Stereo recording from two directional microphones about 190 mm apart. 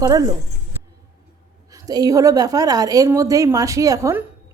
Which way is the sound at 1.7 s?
20° right (ahead or behind).